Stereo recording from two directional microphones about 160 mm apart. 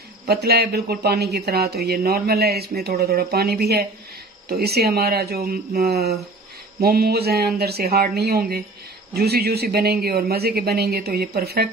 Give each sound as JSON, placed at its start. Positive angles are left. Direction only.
{"t": 0.3, "sound": "speech", "side_deg": -80}